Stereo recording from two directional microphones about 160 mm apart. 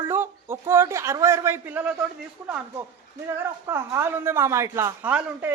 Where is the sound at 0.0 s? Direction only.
15° right (ahead or behind).